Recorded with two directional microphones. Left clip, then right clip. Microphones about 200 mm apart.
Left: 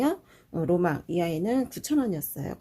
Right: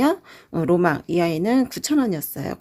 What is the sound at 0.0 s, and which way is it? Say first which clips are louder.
Speech: right 7 dB; 35° right (ahead or behind).